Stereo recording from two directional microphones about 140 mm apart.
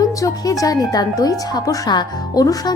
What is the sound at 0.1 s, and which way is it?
Speech, 25° left (ahead or behind).